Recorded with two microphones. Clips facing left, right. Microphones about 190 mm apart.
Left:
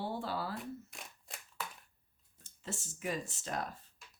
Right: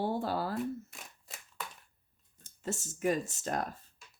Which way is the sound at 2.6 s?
45° right (ahead or behind).